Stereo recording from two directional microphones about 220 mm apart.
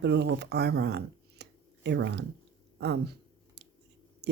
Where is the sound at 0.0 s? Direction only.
55° right (ahead or behind).